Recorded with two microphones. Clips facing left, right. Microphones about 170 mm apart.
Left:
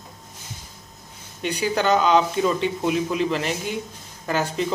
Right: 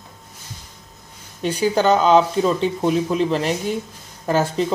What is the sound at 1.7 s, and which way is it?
A man's voice, 35° right (ahead or behind).